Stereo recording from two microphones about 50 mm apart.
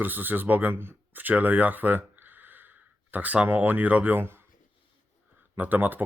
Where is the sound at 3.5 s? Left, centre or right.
Right.